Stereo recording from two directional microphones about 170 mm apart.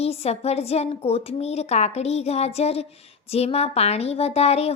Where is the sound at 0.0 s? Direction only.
35° left (ahead or behind).